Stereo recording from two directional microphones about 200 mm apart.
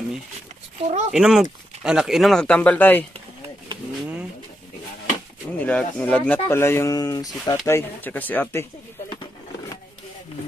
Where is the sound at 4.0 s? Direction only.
5° right (ahead or behind).